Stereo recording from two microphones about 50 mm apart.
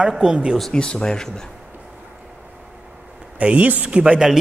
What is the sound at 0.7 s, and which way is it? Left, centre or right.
Speech, centre.